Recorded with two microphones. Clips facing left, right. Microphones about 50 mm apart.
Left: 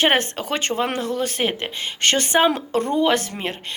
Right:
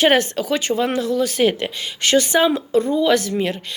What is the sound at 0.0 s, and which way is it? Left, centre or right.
A woman's voice, left.